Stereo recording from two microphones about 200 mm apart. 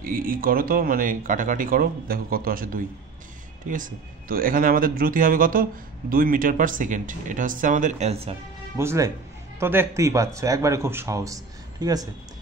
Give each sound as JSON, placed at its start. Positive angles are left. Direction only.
{"t": 0.0, "sound": "speech", "side_deg": -45}
{"t": 8.7, "sound": "speech", "side_deg": -15}